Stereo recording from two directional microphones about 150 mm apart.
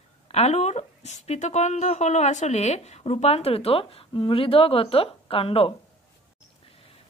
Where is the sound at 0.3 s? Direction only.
45° left (ahead or behind).